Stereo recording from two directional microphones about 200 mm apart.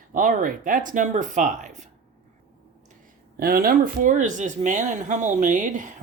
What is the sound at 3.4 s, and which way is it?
Speech, 50° right (ahead or behind).